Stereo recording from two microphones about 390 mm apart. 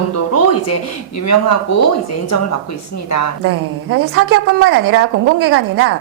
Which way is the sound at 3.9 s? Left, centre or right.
Right.